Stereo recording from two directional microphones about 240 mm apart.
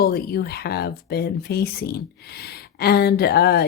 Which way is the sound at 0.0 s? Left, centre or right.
Left.